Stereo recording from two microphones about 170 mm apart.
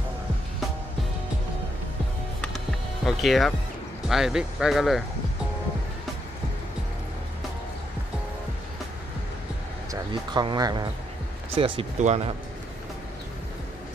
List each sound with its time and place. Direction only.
3.1 s speech: centre (ahead or behind)
9.8 s speech: 25° right (ahead or behind)